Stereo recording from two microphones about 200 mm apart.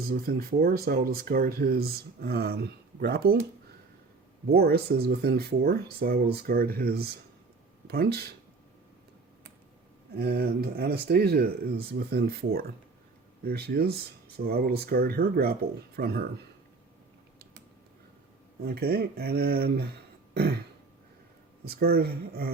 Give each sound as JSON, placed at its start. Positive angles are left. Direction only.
{"t": 0.1, "sound": "speech", "side_deg": -50}
{"t": 4.4, "sound": "speech", "side_deg": -50}
{"t": 10.2, "sound": "speech", "side_deg": -55}
{"t": 18.6, "sound": "speech", "side_deg": -50}
{"t": 20.3, "sound": "throat clearing", "side_deg": -50}
{"t": 21.6, "sound": "speech", "side_deg": -50}